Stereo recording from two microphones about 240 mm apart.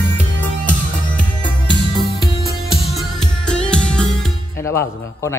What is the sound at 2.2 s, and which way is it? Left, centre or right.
Music, left.